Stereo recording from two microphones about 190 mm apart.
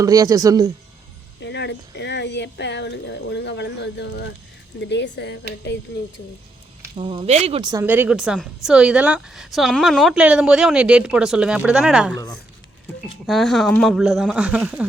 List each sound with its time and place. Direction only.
0.0 s speech: 20° right (ahead or behind)
1.4 s speech: 65° left (ahead or behind)
6.9 s speech: 30° right (ahead or behind)
7.9 s a woman's voice: 10° right (ahead or behind)
13.2 s a woman's voice: centre (ahead or behind)